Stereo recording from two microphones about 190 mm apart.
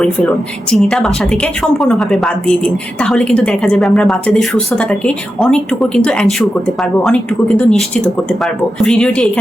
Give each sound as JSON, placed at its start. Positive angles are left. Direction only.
{"t": 0.7, "sound": "a woman's voice", "side_deg": 0}